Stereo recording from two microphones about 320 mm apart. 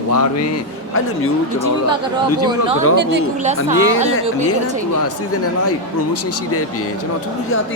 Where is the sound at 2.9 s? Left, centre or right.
Right.